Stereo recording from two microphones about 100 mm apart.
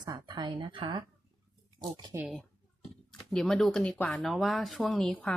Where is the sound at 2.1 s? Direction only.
30° right (ahead or behind).